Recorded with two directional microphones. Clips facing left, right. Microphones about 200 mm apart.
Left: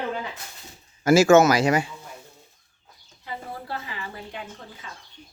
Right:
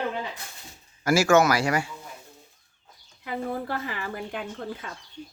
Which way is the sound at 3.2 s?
55° right (ahead or behind).